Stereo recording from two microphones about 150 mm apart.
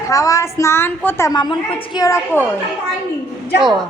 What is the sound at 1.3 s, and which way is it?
A woman's voice, 30° left (ahead or behind).